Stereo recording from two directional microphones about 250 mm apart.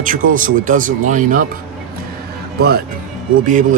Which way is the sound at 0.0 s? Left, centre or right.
Right.